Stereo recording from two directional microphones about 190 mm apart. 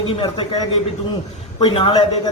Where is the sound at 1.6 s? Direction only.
25° left (ahead or behind).